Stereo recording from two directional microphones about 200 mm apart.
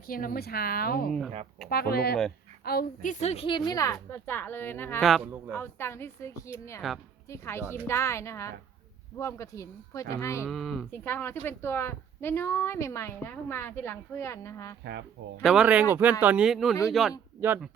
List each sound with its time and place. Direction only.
0.1 s a woman's voice: 45° left (ahead or behind); by 5.0 s 10° left (ahead or behind)
5.0 s speech: centre (ahead or behind)
5.5 s a woman's voice: 10° left (ahead or behind)
6.8 s speech: centre (ahead or behind)
7.3 s a woman's voice: 15° left (ahead or behind)
10.4 s speech: centre (ahead or behind)
10.9 s a woman's voice: 10° left (ahead or behind)
15.4 s speech: 5° right (ahead or behind)
17.4 s speech: 10° right (ahead or behind)